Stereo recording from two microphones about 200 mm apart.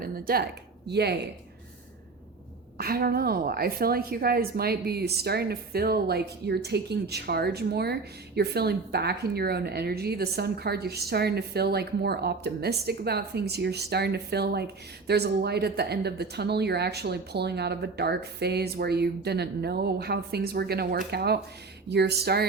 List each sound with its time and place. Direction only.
0.0 s a woman's voice: 50° right (ahead or behind)
2.7 s a woman's voice: 50° right (ahead or behind)